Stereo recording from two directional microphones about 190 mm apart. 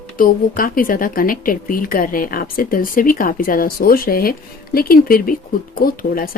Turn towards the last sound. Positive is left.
turn(degrees=50)  # may be behind; listen again after turning